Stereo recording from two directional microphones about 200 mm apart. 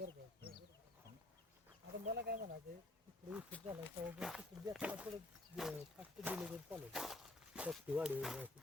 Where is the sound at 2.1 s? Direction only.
50° right (ahead or behind).